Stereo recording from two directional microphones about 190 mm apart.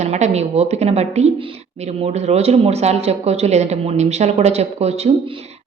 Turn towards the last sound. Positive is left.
turn(degrees=-35)  # may be behind; listen again after turning